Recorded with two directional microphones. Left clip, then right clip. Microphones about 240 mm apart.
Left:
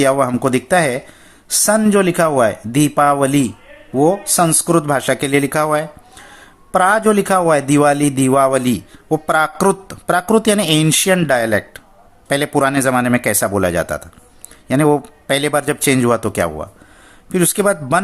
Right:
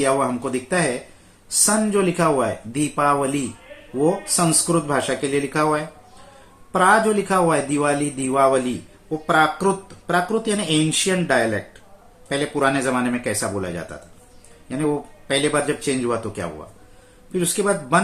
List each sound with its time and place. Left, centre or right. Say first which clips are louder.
0.0 s speech: left 6 dB; left